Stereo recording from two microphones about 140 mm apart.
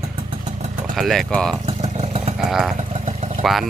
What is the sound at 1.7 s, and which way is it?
Motorcycle, 45° right (ahead or behind).